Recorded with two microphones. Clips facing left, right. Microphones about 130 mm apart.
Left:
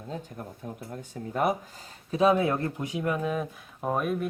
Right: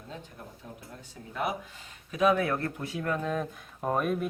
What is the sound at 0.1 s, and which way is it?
Speech, 45° left (ahead or behind).